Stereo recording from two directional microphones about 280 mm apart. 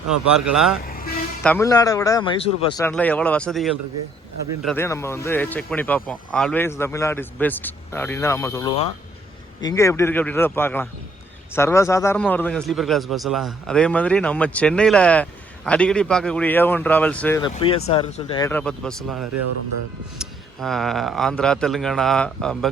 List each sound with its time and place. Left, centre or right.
0.5 s a man's voice: centre
0.9 s vehicle: left
1.5 s speech: centre
2.9 s a man's voice: centre
19.4 s speech: right
20.1 s a man's voice: centre